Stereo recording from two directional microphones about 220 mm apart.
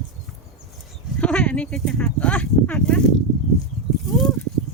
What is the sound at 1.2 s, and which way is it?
Speech, 5° left (ahead or behind).